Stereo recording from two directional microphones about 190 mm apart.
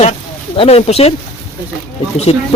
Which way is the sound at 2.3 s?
30° left (ahead or behind).